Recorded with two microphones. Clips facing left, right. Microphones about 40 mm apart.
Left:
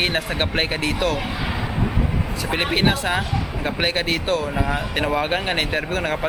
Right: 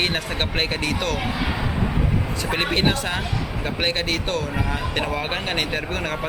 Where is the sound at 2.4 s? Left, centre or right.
Centre.